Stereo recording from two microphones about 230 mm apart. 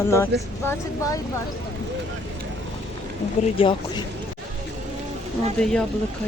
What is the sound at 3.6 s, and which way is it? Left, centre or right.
Speech, left.